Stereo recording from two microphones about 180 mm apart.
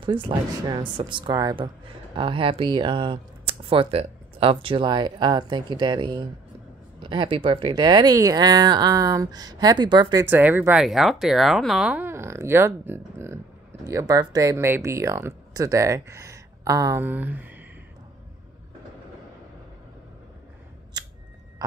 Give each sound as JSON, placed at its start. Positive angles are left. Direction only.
{"t": 0.0, "sound": "speech", "side_deg": -30}
{"t": 10.2, "sound": "speech", "side_deg": -10}